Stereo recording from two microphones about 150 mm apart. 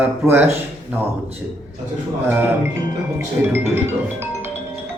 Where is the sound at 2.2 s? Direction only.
15° right (ahead or behind).